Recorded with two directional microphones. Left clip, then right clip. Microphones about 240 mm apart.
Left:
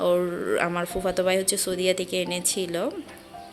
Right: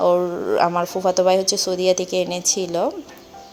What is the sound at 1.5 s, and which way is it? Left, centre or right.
Speech, left.